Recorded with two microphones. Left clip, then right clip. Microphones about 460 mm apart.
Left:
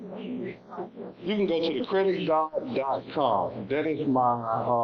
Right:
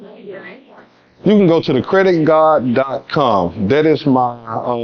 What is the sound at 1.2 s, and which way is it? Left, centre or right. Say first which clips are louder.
Speech: right 14 dB; right.